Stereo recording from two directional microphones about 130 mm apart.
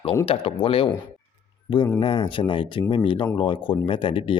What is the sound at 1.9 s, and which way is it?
Speech, 40° left (ahead or behind).